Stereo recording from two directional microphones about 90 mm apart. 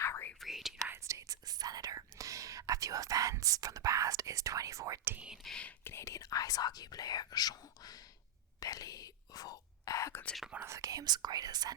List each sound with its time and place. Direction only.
0.0 s whispering: 30° left (ahead or behind)
0.3 s speech: centre (ahead or behind)
0.9 s speech: 30° right (ahead or behind)
5.1 s speech: 10° right (ahead or behind)
5.4 s speech: 5° left (ahead or behind)
5.6 s speech: 25° left (ahead or behind)
10.5 s speech: 25° right (ahead or behind)
10.8 s speech: 40° right (ahead or behind)